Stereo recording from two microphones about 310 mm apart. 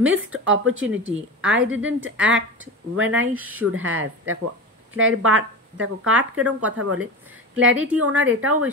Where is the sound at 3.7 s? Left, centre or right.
Right.